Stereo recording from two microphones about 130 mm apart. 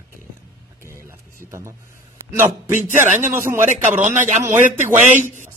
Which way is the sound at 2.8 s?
70° right (ahead or behind).